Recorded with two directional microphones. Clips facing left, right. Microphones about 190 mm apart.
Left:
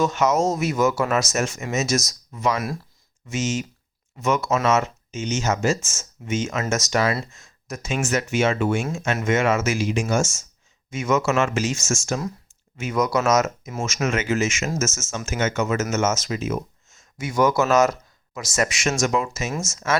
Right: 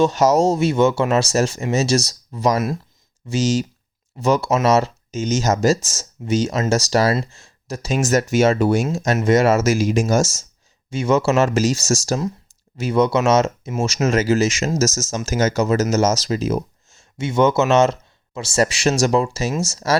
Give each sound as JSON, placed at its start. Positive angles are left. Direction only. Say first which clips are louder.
{"t": 0.0, "sound": "speech", "louder": "right 5 dB", "side_deg": -35}